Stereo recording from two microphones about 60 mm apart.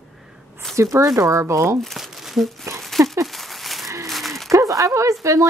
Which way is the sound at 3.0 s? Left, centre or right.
Right.